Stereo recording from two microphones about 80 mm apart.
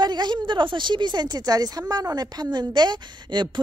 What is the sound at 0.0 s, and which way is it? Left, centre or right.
Speech, right.